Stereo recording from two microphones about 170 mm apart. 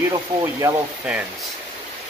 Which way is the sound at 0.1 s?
20° right (ahead or behind).